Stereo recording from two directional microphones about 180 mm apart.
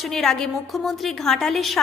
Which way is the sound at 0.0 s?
Centre (ahead or behind).